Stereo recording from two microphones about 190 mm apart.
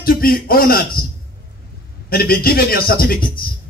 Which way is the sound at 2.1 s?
50° left (ahead or behind).